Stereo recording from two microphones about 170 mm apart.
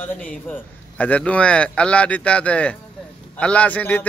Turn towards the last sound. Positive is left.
turn(degrees=10)  # may be behind; listen again after turning